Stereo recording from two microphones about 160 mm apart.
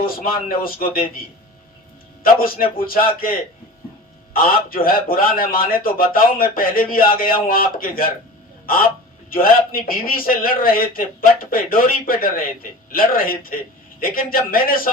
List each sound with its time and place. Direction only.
0.0 s a man's voice: 65° left (ahead or behind)
2.2 s a man's voice: 65° left (ahead or behind)
4.4 s a man's voice: 65° left (ahead or behind)
9.3 s a man's voice: 65° left (ahead or behind)